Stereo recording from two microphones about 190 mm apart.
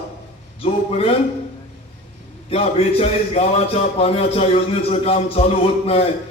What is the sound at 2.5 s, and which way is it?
A man's voice, 30° left (ahead or behind).